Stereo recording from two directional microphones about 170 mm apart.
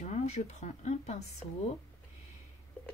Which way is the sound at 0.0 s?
40° left (ahead or behind).